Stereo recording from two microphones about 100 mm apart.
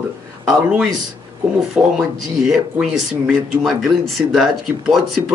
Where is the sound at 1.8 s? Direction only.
5° right (ahead or behind).